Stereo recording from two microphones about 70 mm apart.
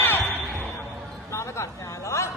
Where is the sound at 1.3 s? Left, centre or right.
Left.